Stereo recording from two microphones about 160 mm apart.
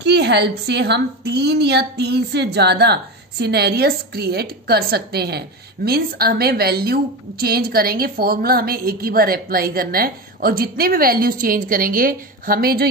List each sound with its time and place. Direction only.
0.0 s a woman's voice: 90° right; by 12.8 s 65° right (ahead or behind)